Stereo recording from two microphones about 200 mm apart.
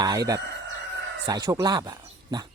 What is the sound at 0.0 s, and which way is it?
Speech, 15° right (ahead or behind).